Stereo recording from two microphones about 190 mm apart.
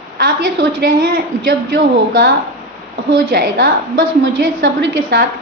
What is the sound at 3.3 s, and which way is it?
A woman's voice, 65° right (ahead or behind).